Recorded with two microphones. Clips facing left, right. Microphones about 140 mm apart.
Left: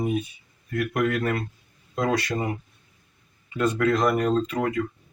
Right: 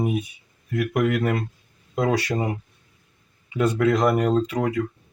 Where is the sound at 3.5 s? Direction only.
10° right (ahead or behind).